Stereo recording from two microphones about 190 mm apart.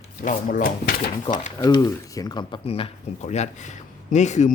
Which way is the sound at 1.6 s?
25° left (ahead or behind).